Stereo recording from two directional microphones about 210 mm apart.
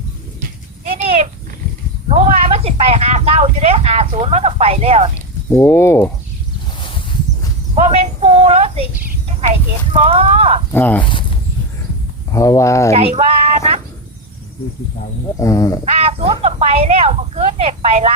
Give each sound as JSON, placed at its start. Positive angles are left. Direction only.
{"t": 2.0, "sound": "a sound", "side_deg": -30}
{"t": 5.5, "sound": "speech", "side_deg": 10}
{"t": 6.7, "sound": "a sound", "side_deg": 25}
{"t": 7.8, "sound": "a sound", "side_deg": -30}
{"t": 9.5, "sound": "speech", "side_deg": -30}
{"t": 10.7, "sound": "speech", "side_deg": 10}
{"t": 11.0, "sound": "walk", "side_deg": 25}
{"t": 12.3, "sound": "speech", "side_deg": 15}
{"t": 12.9, "sound": "child singing", "side_deg": -30}
{"t": 15.4, "sound": "speech", "side_deg": 15}
{"t": 15.8, "sound": "speech", "side_deg": -30}